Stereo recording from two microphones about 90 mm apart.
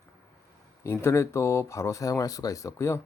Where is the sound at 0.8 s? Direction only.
30° left (ahead or behind).